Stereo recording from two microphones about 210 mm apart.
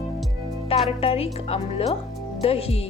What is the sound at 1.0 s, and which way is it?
Speech, 25° left (ahead or behind).